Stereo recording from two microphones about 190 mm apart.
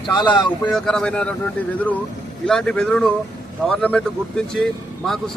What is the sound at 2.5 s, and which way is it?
A man's voice, 5° left (ahead or behind).